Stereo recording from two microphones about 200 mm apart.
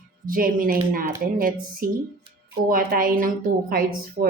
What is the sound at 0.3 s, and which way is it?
A woman's voice, 45° right (ahead or behind).